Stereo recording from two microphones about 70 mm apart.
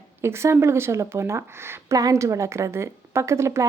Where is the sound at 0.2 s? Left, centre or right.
Right.